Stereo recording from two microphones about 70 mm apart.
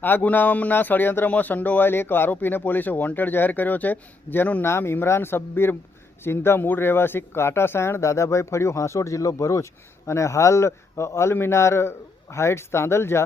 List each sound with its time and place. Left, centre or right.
0.0 s speech: left
4.6 s speech: left